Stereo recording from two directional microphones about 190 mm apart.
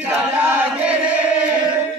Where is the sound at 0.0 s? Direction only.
10° right (ahead or behind).